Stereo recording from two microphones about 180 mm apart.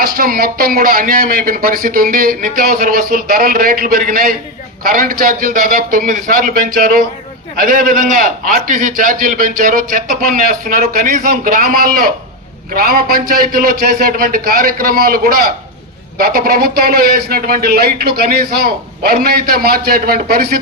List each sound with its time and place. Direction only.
0.0 s a man's voice: 55° right (ahead or behind)
7.6 s a man's voice: 50° right (ahead or behind)